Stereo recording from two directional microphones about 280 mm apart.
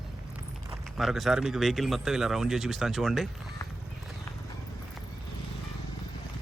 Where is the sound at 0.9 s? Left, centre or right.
Centre.